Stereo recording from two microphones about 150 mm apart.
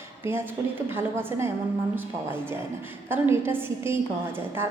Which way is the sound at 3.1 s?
15° right (ahead or behind).